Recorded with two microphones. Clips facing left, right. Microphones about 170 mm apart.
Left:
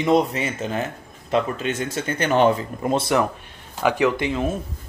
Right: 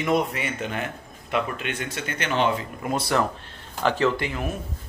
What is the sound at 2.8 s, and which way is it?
Speech, 25° left (ahead or behind).